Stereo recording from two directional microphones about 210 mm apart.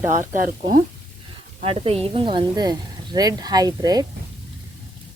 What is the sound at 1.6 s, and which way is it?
A woman's voice, 30° right (ahead or behind).